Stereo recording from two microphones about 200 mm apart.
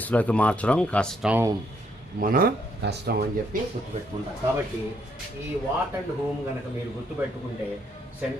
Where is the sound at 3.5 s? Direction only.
40° right (ahead or behind).